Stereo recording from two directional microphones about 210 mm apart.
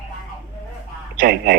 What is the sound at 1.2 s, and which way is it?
Speech, 45° right (ahead or behind).